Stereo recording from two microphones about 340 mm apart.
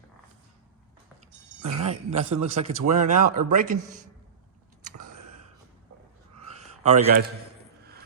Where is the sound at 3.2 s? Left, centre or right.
Right.